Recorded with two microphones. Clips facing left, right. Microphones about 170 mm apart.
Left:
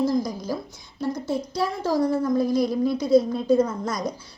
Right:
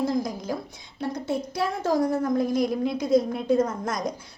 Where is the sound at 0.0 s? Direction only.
55° right (ahead or behind).